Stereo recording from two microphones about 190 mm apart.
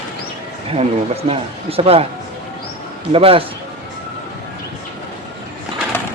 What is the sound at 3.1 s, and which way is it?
Speech, 30° right (ahead or behind).